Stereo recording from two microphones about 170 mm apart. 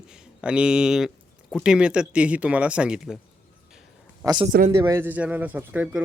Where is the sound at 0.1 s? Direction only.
5° right (ahead or behind).